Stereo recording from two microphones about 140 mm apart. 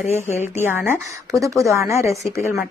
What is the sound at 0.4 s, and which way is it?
A woman's voice, 15° right (ahead or behind).